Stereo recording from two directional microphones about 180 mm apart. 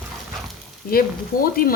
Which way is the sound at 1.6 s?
55° left (ahead or behind).